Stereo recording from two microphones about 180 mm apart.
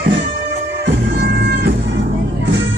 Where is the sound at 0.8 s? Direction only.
60° right (ahead or behind).